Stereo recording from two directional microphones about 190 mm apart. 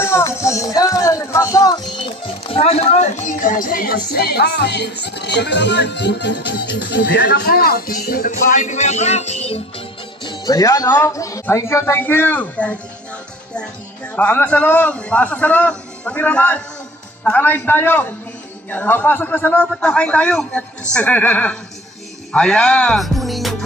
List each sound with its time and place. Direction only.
0.0 s speech: 15° left (ahead or behind); by 9.6 s 35° left (ahead or behind)
10.2 s a man's voice: 20° left (ahead or behind)
14.1 s a man's voice: 10° left (ahead or behind)
22.3 s music: 5° left (ahead or behind)